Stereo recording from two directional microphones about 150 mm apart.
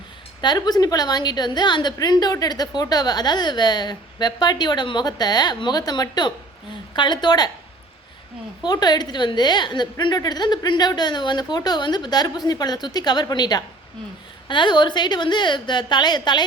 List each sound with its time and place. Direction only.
0.4 s a woman's voice: 30° left (ahead or behind)
8.6 s a woman's voice: 30° left (ahead or behind)